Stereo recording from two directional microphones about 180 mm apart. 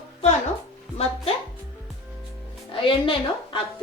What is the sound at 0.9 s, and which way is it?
Music, 35° left (ahead or behind).